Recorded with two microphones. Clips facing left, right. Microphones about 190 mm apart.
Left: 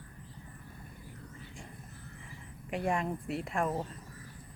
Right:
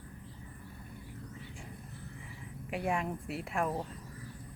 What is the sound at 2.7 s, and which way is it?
Speech, centre (ahead or behind).